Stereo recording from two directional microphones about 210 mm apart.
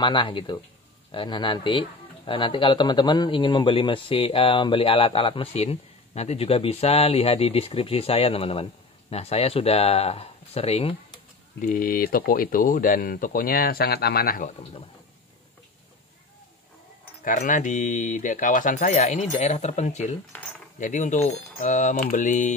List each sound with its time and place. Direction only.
0.0 s speech: 25° left (ahead or behind)
11.6 s speech: 40° left (ahead or behind)
17.2 s speech: 40° left (ahead or behind)
20.3 s cutlery: 5° left (ahead or behind)
20.8 s speech: 35° left (ahead or behind)